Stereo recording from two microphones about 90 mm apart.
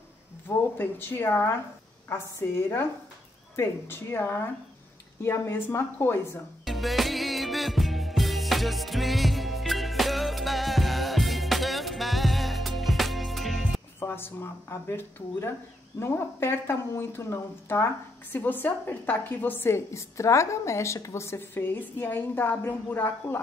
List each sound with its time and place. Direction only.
0.7 s speech: 25° left (ahead or behind)
6.6 s music: centre (ahead or behind)
13.9 s speech: 25° left (ahead or behind)